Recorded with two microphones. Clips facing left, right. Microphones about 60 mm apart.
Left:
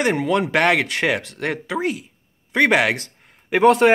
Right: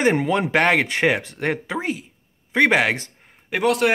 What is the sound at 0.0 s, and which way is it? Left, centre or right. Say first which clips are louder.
Speech: even; centre.